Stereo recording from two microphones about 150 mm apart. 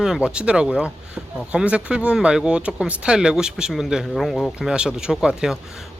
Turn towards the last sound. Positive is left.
turn(degrees=-5)  # may be behind; listen again after turning